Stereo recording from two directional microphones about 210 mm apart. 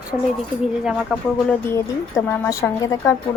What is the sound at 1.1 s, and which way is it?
A woman's voice, 10° left (ahead or behind).